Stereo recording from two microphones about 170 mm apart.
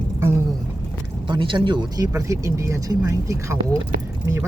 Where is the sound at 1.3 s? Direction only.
30° right (ahead or behind).